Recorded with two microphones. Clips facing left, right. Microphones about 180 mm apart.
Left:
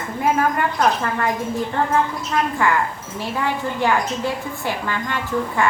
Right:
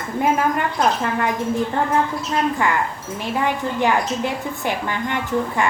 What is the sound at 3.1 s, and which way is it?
A woman's voice, 20° right (ahead or behind).